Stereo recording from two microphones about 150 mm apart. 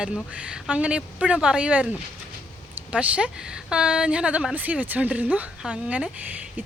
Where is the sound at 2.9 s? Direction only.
10° right (ahead or behind).